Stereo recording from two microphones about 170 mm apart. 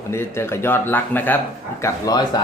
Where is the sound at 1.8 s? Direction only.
25° left (ahead or behind).